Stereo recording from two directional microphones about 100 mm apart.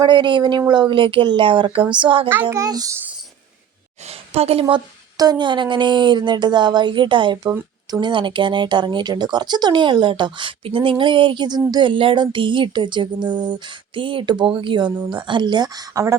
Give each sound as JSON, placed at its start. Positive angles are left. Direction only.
{"t": 0.0, "sound": "speech", "side_deg": -50}
{"t": 2.0, "sound": "a sound", "side_deg": -60}
{"t": 2.5, "sound": "a child's voice", "side_deg": -40}
{"t": 4.4, "sound": "a woman's voice", "side_deg": -80}
{"t": 5.1, "sound": "speech", "side_deg": -40}
{"t": 10.6, "sound": "a sound", "side_deg": -65}
{"t": 11.7, "sound": "speech", "side_deg": -55}